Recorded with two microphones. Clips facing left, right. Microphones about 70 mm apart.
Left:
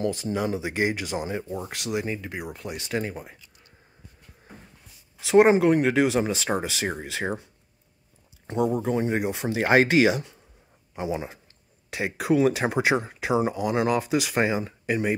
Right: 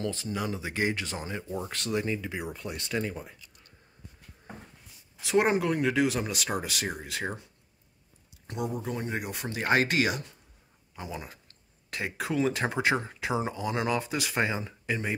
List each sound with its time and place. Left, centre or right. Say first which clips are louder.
0.0 s speech: left 6 dB; left
5.3 s speech: left 8 dB; left
5.8 s speech: left 5 dB; left
6.1 s speech: left 7 dB; left
8.5 s speech: left 9 dB; left
11.9 s speech: left 8 dB; centre